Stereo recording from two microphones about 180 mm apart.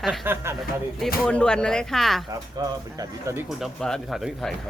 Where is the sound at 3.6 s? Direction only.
Centre (ahead or behind).